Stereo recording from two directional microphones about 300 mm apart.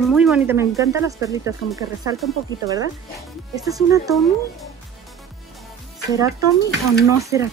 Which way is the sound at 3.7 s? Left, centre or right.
Centre.